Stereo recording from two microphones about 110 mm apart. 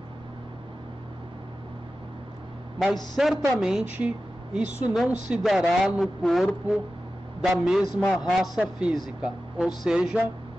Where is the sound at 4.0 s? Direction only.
10° right (ahead or behind).